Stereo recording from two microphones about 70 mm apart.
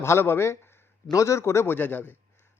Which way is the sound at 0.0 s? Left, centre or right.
Left.